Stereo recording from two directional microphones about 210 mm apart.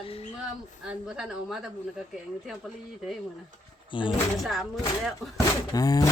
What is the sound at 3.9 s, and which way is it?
Speech, 25° left (ahead or behind).